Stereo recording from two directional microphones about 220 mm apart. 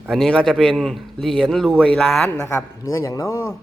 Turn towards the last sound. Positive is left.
turn(degrees=15)  # may be behind; listen again after turning